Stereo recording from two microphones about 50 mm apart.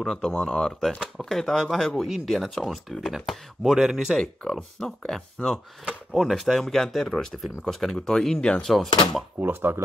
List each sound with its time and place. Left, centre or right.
0.0 s speech: centre
4.2 s speech: centre
8.6 s speech: centre
9.4 s speech: right